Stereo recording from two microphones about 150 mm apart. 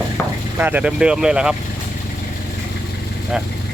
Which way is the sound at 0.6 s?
10° right (ahead or behind).